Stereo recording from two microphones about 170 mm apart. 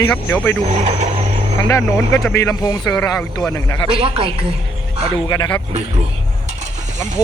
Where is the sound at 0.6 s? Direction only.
40° right (ahead or behind).